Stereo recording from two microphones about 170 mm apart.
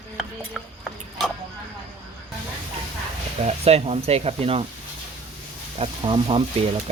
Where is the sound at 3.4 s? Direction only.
40° right (ahead or behind).